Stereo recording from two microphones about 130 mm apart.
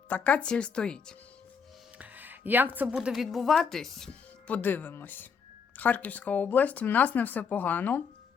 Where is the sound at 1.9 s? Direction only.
10° right (ahead or behind).